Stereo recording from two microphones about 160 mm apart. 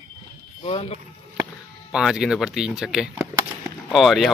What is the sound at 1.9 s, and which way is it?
Speech, centre (ahead or behind).